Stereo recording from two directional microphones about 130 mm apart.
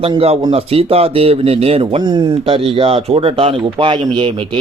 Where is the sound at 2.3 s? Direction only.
45° right (ahead or behind).